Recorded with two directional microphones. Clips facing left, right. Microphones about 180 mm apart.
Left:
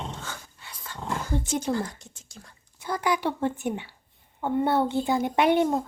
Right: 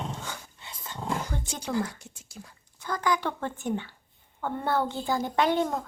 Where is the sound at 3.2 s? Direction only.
15° left (ahead or behind).